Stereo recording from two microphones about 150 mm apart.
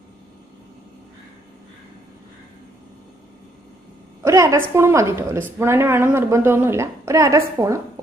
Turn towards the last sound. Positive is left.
turn(degrees=-20)  # may be behind; listen again after turning